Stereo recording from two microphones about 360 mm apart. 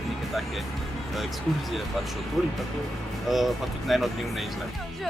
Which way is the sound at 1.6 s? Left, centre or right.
Centre.